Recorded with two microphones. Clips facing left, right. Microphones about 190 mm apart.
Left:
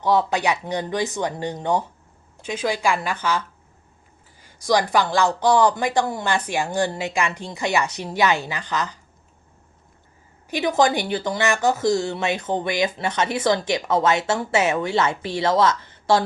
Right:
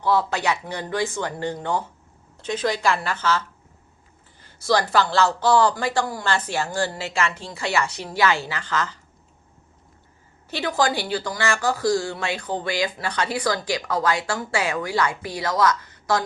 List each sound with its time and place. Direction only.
0.0 s speech: 20° left (ahead or behind)
10.5 s speech: 20° left (ahead or behind)